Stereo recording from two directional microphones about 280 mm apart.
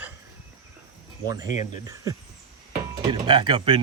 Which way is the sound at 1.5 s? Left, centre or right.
Left.